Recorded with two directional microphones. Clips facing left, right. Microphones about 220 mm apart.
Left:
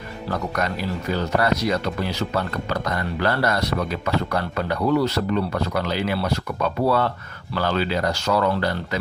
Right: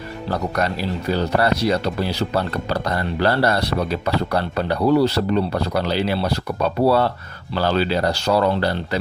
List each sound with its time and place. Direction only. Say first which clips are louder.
0.3 s speech: right 3 dB; 35° right (ahead or behind)